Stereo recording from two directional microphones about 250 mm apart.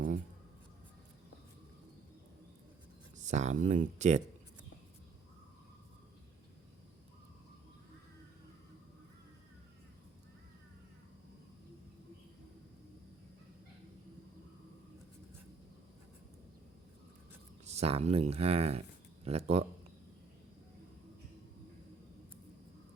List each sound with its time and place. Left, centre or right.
3.2 s speech: right
17.7 s speech: right